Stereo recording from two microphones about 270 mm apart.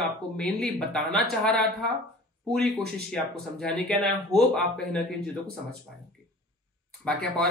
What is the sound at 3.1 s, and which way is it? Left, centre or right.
Speech, centre.